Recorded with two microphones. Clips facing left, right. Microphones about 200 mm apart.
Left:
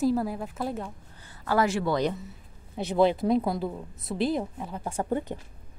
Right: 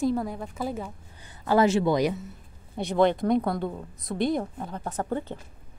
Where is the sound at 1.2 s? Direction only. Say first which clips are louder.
Right 4 dB; 20° right (ahead or behind).